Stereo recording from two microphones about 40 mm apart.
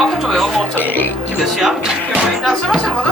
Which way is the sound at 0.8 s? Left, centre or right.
Left.